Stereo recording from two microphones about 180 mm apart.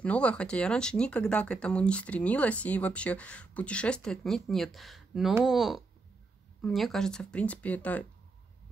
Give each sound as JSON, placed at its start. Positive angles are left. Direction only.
{"t": 0.0, "sound": "speech", "side_deg": 5}